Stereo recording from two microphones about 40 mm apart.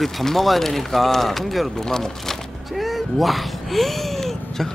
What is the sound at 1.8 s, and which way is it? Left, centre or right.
Speech, centre.